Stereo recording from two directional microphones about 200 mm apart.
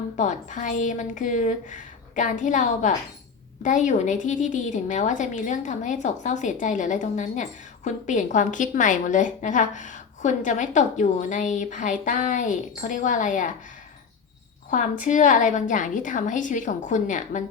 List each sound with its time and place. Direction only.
0.2 s a woman's voice: 40° left (ahead or behind)
15.0 s a woman's voice: 40° left (ahead or behind)